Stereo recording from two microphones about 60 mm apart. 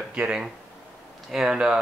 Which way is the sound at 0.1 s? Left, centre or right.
Centre.